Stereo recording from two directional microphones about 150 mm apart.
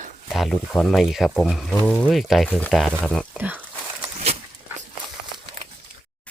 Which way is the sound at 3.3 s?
10° right (ahead or behind).